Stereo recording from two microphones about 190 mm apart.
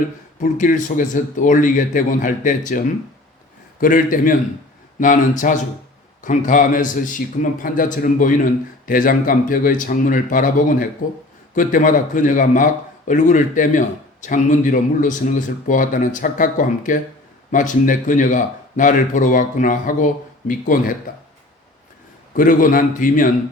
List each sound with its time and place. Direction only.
0.3 s a man's voice: 45° left (ahead or behind)
22.4 s a man's voice: 45° left (ahead or behind)